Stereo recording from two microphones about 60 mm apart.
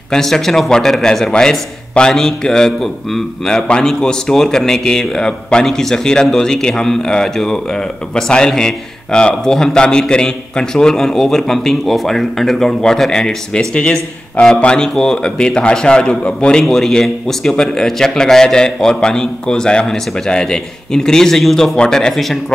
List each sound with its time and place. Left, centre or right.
0.1 s speech: centre
16.6 s speech: centre